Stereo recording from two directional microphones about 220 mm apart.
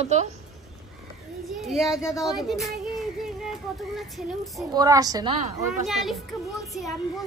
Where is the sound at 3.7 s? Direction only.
Centre (ahead or behind).